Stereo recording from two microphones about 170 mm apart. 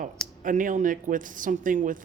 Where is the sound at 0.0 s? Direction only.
50° right (ahead or behind).